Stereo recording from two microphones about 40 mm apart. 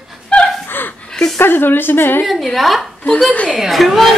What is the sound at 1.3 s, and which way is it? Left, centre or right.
Speech, left.